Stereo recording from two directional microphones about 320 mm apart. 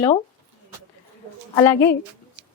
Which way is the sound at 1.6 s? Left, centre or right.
Centre.